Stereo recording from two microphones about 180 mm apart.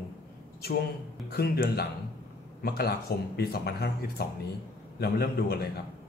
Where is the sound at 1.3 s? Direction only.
60° left (ahead or behind).